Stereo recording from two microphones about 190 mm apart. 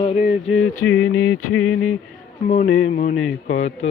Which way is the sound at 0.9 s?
90° left.